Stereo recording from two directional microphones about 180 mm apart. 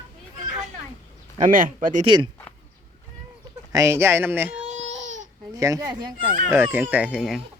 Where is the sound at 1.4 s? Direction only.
50° right (ahead or behind).